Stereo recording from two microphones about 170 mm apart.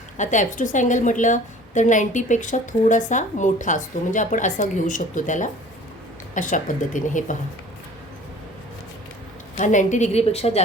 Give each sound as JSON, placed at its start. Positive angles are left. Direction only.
{"t": 0.2, "sound": "a woman's voice", "side_deg": 45}
{"t": 9.6, "sound": "a woman's voice", "side_deg": 45}